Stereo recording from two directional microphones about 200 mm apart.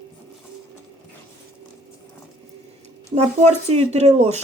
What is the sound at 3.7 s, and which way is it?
Speech, 30° right (ahead or behind).